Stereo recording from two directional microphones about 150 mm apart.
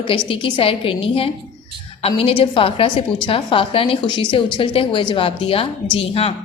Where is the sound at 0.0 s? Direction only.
35° left (ahead or behind).